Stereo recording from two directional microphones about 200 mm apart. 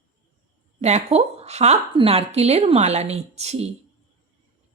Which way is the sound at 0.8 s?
35° right (ahead or behind).